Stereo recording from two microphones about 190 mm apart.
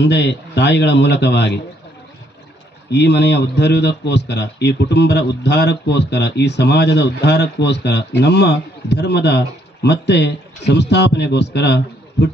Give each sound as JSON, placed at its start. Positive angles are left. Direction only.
{"t": 0.0, "sound": "a man's voice", "side_deg": 65}
{"t": 2.9, "sound": "a man's voice", "side_deg": 65}